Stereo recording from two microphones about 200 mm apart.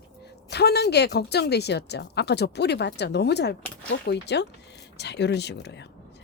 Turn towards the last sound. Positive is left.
turn(degrees=60)  # may be behind; listen again after turning